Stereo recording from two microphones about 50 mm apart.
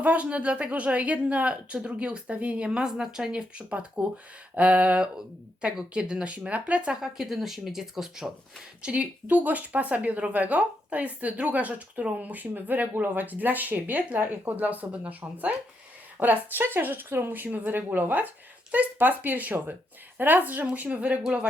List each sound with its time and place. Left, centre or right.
0.0 s a woman's voice: right
4.0 s a woman's voice: right
7.2 s speech: centre
8.8 s a woman's voice: right